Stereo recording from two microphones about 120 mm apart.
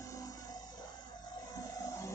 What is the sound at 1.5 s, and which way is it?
Music, 30° left (ahead or behind).